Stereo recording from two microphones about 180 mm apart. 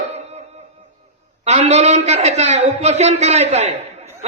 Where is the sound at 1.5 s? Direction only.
40° right (ahead or behind).